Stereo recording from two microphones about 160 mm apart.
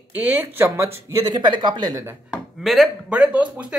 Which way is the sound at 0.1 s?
10° right (ahead or behind).